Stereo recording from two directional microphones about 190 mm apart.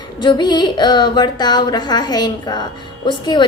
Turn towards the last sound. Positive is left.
turn(degrees=25)  # may be behind; listen again after turning